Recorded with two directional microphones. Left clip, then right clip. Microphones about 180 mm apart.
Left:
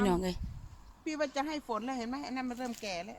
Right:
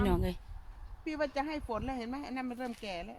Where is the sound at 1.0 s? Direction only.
60° left (ahead or behind).